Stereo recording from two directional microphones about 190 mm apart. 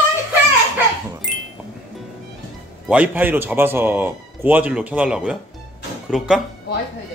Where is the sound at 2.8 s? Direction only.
5° right (ahead or behind).